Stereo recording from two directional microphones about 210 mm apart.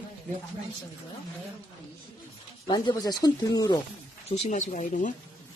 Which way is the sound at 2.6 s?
20° left (ahead or behind).